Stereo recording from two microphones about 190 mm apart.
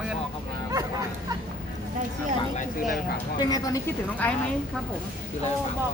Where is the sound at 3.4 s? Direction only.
20° left (ahead or behind).